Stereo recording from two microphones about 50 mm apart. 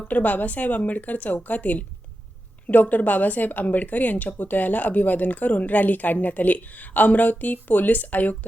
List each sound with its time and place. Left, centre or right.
0.1 s a woman's voice: left